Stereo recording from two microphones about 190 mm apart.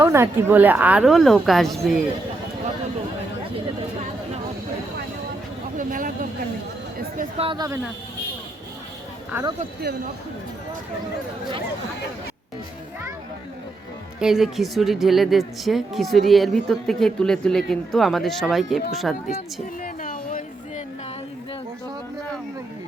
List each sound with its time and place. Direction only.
0.0 s a woman's voice: 15° right (ahead or behind)
5.7 s a sound: 45° right (ahead or behind)
7.3 s speech: 25° right (ahead or behind)
9.8 s speech: 60° right (ahead or behind)
14.2 s a woman's voice: centre (ahead or behind)
19.8 s a sound: 45° left (ahead or behind)